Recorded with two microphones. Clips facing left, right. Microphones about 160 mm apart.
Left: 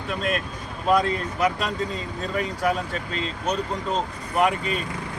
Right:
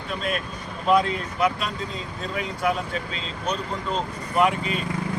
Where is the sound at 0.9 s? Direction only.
45° left (ahead or behind).